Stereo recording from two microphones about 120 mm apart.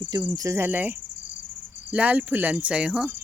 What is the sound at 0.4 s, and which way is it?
Cricket, 20° right (ahead or behind).